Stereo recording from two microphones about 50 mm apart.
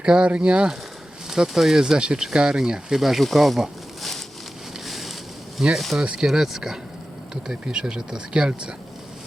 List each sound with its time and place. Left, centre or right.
0.0 s speech: centre
1.3 s speech: centre
4.9 s boat: centre
5.7 s speech: centre
6.0 s speech: centre
7.4 s speech: centre